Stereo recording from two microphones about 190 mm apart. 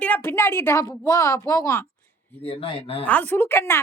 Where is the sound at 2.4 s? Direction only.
30° left (ahead or behind).